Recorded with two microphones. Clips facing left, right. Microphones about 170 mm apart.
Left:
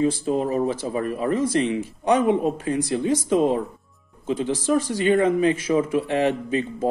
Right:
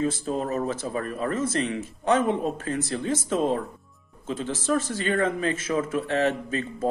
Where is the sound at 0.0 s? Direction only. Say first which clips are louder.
Left 5 dB; 15° left (ahead or behind).